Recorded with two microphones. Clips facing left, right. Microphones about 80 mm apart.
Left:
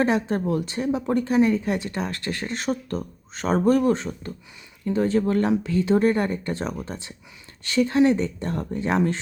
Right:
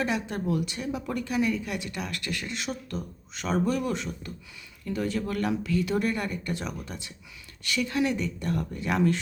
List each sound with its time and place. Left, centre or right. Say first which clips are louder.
0.0 s a woman's voice: left 7 dB; left